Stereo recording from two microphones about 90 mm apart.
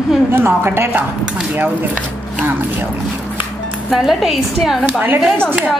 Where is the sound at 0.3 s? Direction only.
25° right (ahead or behind).